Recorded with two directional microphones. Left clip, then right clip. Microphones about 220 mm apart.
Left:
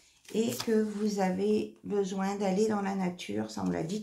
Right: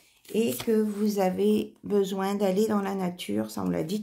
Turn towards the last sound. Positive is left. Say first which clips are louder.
# right 4 dB
turn(degrees=-45)  # may be behind; listen again after turning